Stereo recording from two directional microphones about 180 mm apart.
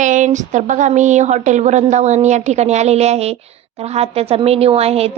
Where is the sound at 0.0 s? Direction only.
45° right (ahead or behind).